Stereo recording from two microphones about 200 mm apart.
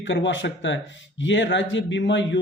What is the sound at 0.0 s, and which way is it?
Speech, 65° left (ahead or behind).